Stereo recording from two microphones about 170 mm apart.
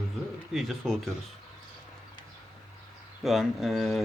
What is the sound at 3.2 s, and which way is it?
Speech, centre (ahead or behind).